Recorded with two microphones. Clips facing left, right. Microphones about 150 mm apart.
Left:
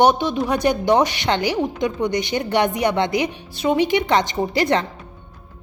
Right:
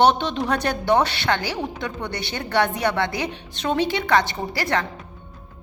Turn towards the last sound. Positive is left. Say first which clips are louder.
# left 5 dB
turn(degrees=20)  # may be behind; listen again after turning